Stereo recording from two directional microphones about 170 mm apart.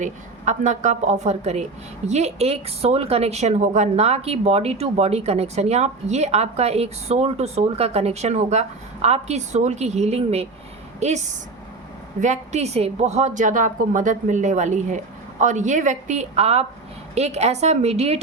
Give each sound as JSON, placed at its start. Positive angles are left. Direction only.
{"t": 0.0, "sound": "a woman's voice", "side_deg": -45}